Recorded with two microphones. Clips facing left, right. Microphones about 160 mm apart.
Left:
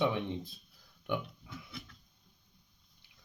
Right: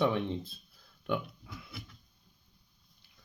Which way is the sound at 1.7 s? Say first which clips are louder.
Even; 5° right (ahead or behind).